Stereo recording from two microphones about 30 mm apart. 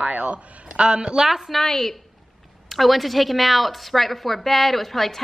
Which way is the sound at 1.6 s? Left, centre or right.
Centre.